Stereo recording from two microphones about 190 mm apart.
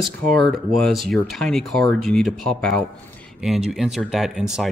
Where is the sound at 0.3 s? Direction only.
Centre (ahead or behind).